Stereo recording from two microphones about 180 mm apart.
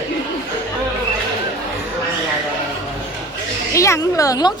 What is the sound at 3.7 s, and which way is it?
Speech, 15° left (ahead or behind).